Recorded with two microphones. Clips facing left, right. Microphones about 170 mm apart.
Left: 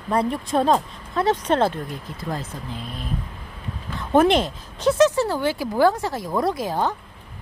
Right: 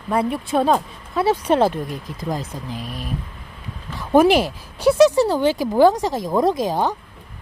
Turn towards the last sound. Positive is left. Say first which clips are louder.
# right 4 dB
turn(degrees=-15)  # may be behind; listen again after turning